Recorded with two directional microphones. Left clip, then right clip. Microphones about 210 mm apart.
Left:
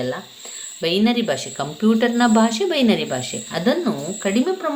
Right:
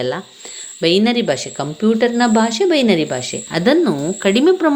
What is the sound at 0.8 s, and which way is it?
A woman's voice, 30° right (ahead or behind).